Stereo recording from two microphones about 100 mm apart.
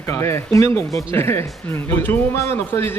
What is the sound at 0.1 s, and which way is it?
A man's voice, 25° left (ahead or behind).